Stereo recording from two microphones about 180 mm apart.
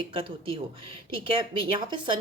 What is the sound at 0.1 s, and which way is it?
Speech, 30° right (ahead or behind).